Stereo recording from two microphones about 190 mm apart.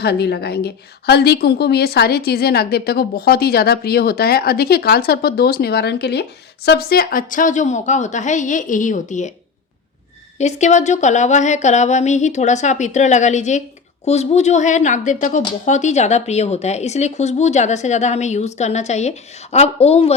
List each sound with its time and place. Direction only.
0.0 s a woman's voice: 60° left (ahead or behind); by 9.3 s 40° left (ahead or behind)
10.3 s speech: 35° left (ahead or behind)